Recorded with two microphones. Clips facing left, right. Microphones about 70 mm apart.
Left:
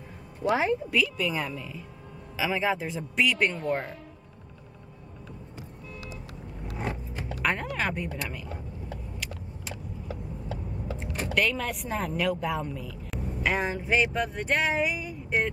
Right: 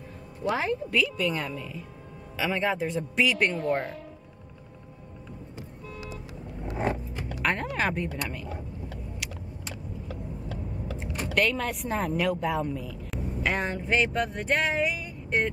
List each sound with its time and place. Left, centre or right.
0.5 s speech: centre
0.9 s a woman's voice: centre
6.7 s vehicle: right
7.4 s a woman's voice: centre
11.3 s a woman's voice: centre